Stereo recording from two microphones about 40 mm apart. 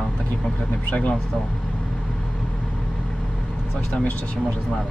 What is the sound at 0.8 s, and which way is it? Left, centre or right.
Speech, left.